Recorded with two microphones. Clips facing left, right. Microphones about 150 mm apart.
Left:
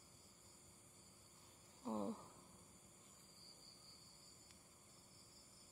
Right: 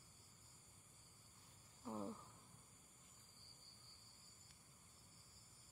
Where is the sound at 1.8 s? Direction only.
25° left (ahead or behind).